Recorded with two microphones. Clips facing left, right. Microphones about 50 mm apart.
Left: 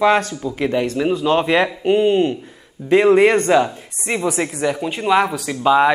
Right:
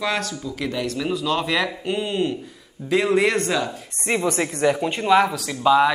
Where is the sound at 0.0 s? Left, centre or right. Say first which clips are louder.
Left 9 dB; left.